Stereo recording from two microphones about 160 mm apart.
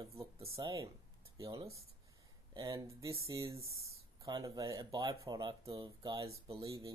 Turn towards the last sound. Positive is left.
turn(degrees=-20)  # may be behind; listen again after turning